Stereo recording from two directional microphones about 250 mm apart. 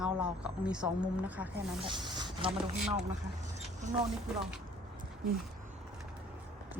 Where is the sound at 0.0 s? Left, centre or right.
Centre.